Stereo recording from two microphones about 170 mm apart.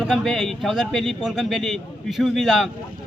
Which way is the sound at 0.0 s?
Centre (ahead or behind).